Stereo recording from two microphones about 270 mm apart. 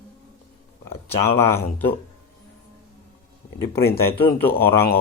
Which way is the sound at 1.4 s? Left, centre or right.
Centre.